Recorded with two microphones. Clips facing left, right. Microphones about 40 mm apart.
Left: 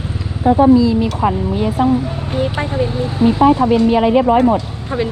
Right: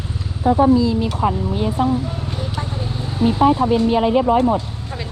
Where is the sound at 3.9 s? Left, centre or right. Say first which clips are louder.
Left 3 dB; left.